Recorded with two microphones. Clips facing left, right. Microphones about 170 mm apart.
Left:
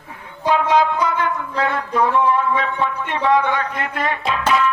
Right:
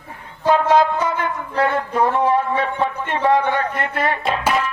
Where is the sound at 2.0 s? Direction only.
45° right (ahead or behind).